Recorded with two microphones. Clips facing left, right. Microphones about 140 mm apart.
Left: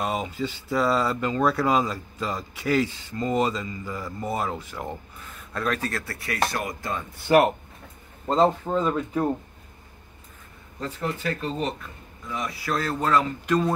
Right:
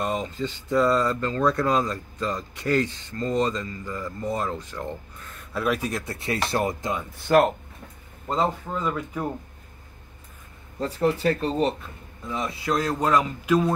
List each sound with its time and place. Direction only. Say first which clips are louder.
0.0 s speech: even; 5° left (ahead or behind)
5.5 s a man's voice: right 2 dB; 10° right (ahead or behind); by 6.9 s 25° right (ahead or behind)
7.2 s speech: even; 10° left (ahead or behind)
8.3 s speech: left 5 dB; 25° left (ahead or behind)
10.8 s a man's voice: right 7 dB; 35° right (ahead or behind); by 13.7 s 5° right (ahead or behind)